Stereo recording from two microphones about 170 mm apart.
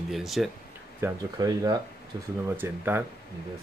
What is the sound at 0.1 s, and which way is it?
Speech, centre (ahead or behind).